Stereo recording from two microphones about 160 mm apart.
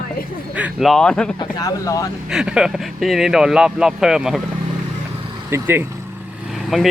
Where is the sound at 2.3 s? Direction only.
5° right (ahead or behind).